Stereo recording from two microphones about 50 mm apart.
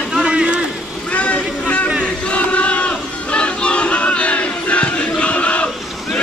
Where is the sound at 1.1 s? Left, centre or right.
Left.